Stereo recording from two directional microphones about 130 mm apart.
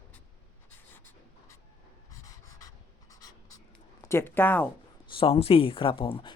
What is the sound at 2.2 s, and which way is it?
Pant, 25° left (ahead or behind).